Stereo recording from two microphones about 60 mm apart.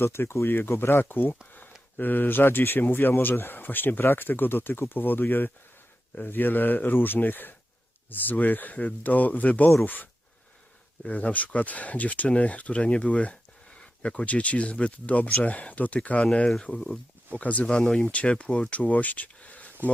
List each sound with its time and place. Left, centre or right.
0.0 s speech: left
16.7 s speech: centre
17.3 s speech: left